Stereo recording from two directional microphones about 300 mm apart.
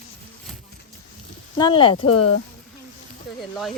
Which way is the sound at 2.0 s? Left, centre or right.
Left.